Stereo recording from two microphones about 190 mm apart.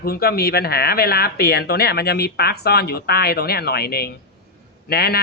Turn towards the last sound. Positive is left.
turn(degrees=55)  # may be behind; listen again after turning